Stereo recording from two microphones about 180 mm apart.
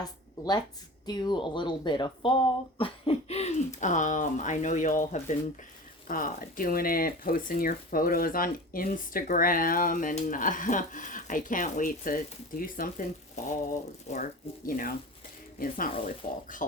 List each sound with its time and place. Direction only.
1.0 s speech: 25° left (ahead or behind); by 14.2 s 40° left (ahead or behind)
14.7 s speech: 50° left (ahead or behind)